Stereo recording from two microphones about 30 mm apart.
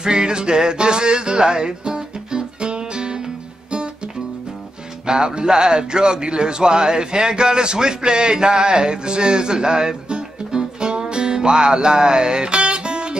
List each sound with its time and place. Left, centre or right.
0.0 s music: right
5.0 s speech: right